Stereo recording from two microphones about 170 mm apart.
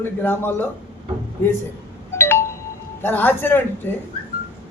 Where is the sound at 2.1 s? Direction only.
15° left (ahead or behind).